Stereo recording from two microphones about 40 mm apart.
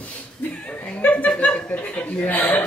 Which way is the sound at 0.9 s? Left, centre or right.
Left.